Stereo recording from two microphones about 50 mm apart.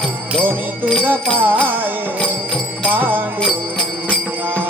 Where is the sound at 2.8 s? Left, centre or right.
Right.